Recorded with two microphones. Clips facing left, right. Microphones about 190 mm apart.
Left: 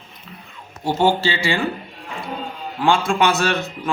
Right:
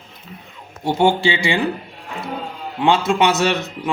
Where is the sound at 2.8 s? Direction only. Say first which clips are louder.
Right 2 dB; 20° right (ahead or behind).